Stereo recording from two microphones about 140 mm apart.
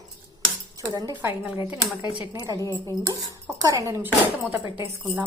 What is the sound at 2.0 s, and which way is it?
Speech, 35° left (ahead or behind).